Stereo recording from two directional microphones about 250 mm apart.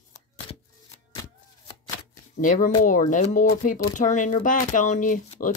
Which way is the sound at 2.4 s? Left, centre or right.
Left.